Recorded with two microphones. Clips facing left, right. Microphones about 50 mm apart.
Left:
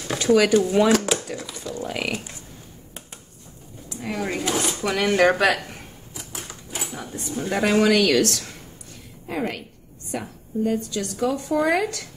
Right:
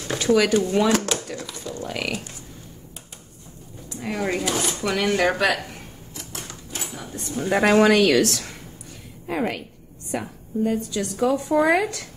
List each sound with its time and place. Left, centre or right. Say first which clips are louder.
0.0 s a sound: left 1 dB; centre
1.8 s speech: left 1 dB; centre
3.9 s speech: right 2 dB; centre
6.1 s a sound: even; centre
7.3 s a woman's voice: right 3 dB; centre
7.6 s speech: right 2 dB; right
8.1 s a woman's voice: right 1 dB; centre